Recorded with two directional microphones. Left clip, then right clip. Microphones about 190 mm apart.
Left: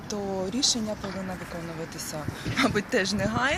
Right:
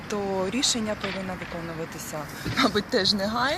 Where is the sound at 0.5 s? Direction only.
15° left (ahead or behind).